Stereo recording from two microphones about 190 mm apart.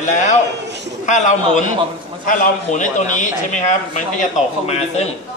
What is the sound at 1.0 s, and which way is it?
A man's voice, 40° left (ahead or behind).